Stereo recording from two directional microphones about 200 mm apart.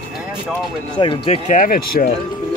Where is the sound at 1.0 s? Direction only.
25° left (ahead or behind).